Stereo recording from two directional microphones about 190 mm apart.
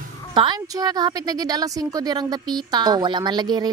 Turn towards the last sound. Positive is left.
turn(degrees=-20)  # may be behind; listen again after turning